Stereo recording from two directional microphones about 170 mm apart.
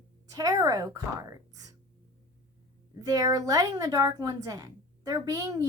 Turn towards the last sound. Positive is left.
turn(degrees=-20)  # may be behind; listen again after turning